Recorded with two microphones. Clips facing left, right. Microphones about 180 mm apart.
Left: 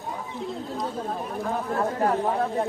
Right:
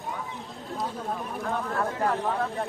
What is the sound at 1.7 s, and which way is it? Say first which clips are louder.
Speech: left 4 dB; 25° left (ahead or behind).